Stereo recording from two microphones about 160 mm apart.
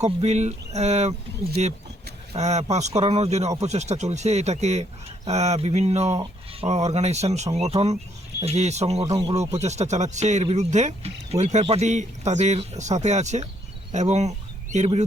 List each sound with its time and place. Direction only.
0.0 s speech: 45° right (ahead or behind)
2.3 s speech: 45° right (ahead or behind)